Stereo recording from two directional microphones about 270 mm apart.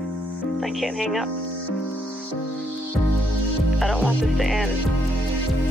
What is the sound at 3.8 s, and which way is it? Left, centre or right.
Speech, centre.